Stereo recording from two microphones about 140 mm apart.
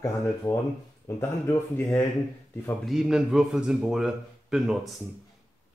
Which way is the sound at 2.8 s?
5° right (ahead or behind).